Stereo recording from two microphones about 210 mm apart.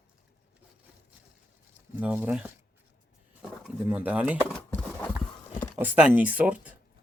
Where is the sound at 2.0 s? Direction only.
5° right (ahead or behind).